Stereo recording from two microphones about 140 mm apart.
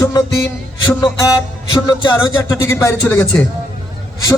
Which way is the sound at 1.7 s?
30° left (ahead or behind).